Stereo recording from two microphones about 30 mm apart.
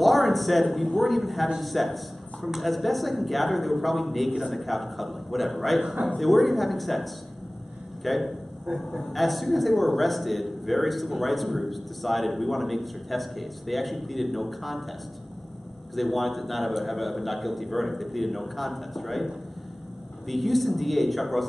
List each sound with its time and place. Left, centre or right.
0.0 s a sound: centre
0.9 s a man's voice: centre
15.9 s speech: centre
20.2 s speech: centre